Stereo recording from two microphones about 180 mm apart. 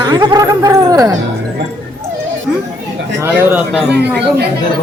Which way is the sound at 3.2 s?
5° right (ahead or behind).